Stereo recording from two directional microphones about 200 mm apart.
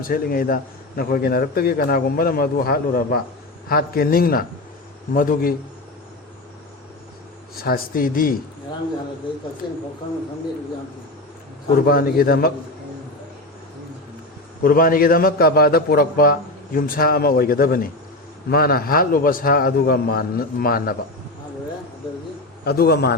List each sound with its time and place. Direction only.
0.0 s a man's voice: 45° left (ahead or behind)
7.5 s a man's voice: 50° left (ahead or behind)
11.9 s a man's voice: 45° left (ahead or behind)
14.6 s a man's voice: 45° left (ahead or behind)
22.6 s a man's voice: 50° left (ahead or behind)